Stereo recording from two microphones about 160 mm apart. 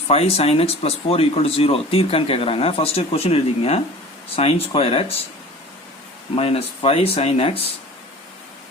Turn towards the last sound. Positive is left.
turn(degrees=40)  # may be behind; listen again after turning